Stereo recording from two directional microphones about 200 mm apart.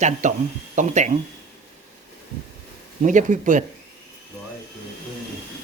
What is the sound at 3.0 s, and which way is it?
Speech, 40° right (ahead or behind).